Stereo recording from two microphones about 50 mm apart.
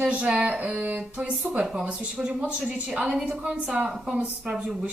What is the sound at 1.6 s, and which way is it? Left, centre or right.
Speech, centre.